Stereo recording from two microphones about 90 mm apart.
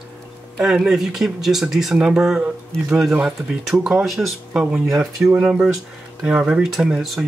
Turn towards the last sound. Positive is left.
turn(degrees=-5)  # may be behind; listen again after turning